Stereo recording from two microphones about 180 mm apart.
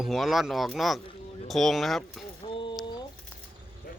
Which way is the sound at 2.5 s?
30° left (ahead or behind).